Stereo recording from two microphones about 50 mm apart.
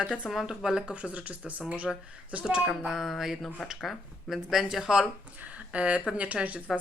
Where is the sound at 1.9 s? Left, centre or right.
Centre.